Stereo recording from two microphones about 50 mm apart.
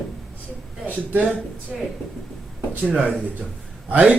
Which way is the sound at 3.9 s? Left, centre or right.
Right.